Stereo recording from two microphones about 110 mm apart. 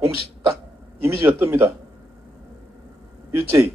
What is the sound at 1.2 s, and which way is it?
Speech, 25° right (ahead or behind).